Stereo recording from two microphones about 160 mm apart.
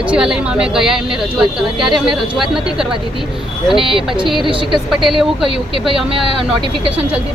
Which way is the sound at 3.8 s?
35° right (ahead or behind).